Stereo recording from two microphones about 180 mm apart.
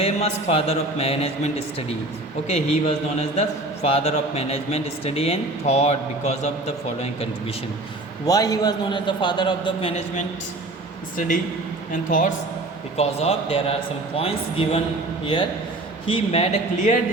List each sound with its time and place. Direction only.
0.0 s a man's voice: 35° left (ahead or behind)
2.5 s a man's voice: 35° left (ahead or behind)
8.3 s a man's voice: 20° left (ahead or behind)
11.9 s a woman's voice: 50° left (ahead or behind)
13.0 s a man's voice: 35° left (ahead or behind)